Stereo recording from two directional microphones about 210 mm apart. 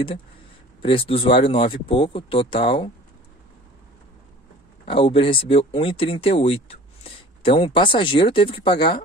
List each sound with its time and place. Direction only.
0.8 s speech: 25° left (ahead or behind)
4.8 s speech: 25° left (ahead or behind)